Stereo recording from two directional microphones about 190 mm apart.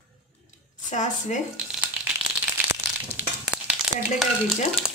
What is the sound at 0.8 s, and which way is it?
Speech, 40° left (ahead or behind).